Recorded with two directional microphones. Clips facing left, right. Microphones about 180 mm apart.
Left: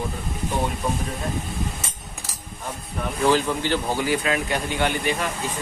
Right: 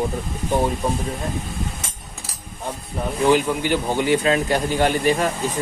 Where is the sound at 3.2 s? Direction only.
15° right (ahead or behind).